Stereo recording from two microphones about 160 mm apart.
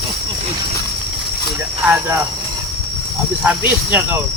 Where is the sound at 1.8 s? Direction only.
10° right (ahead or behind).